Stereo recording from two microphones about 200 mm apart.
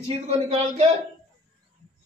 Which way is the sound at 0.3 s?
30° right (ahead or behind).